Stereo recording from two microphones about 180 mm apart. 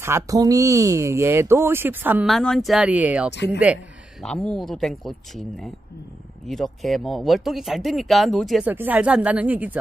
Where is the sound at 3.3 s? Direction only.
75° left (ahead or behind).